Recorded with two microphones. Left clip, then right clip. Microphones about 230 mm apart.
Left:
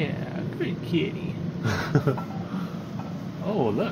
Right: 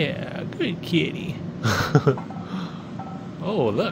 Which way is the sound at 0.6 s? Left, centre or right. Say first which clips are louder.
Right 4 dB; right.